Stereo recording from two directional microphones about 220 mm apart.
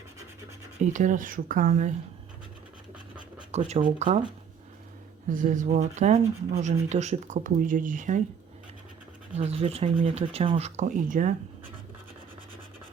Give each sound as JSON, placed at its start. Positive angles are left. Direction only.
{"t": 0.8, "sound": "speech", "side_deg": -35}
{"t": 3.5, "sound": "speech", "side_deg": -35}
{"t": 5.3, "sound": "speech", "side_deg": -35}
{"t": 9.3, "sound": "speech", "side_deg": -30}